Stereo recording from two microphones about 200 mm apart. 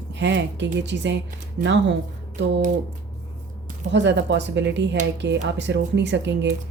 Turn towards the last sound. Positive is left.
turn(degrees=-60)  # may be behind; listen again after turning